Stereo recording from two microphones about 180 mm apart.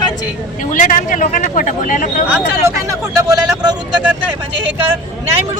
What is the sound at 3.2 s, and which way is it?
Speech, 20° right (ahead or behind).